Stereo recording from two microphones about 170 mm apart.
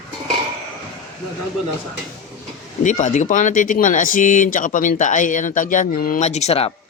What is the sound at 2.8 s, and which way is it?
Speech, 45° left (ahead or behind).